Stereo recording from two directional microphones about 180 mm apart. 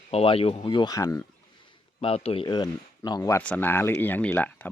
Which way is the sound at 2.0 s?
35° left (ahead or behind).